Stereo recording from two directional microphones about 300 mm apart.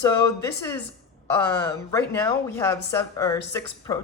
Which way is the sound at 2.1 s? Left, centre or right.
Centre.